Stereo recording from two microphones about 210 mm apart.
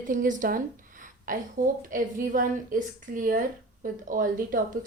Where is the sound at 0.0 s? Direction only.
40° right (ahead or behind).